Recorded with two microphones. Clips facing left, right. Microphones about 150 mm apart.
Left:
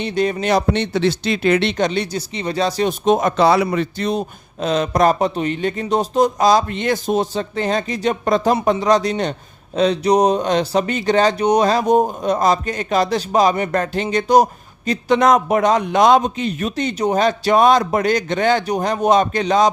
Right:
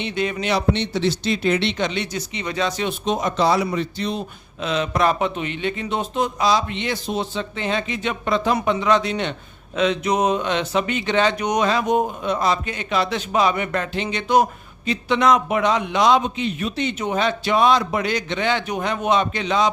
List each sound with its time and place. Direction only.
0.0 s speech: 40° left (ahead or behind)
3.0 s a man's voice: 50° left (ahead or behind)